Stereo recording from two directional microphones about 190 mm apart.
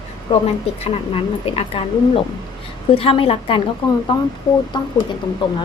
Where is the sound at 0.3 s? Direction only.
30° left (ahead or behind).